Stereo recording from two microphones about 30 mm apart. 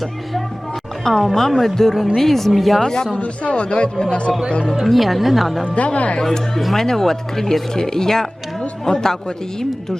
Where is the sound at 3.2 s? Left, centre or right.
Left.